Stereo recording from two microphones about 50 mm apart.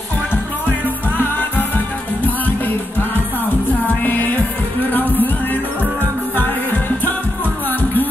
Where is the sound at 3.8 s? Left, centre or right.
Left.